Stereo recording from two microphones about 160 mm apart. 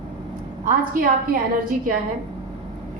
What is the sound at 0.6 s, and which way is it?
Speech, 60° right (ahead or behind).